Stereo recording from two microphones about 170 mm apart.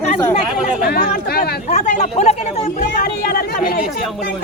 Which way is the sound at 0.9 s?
65° left (ahead or behind).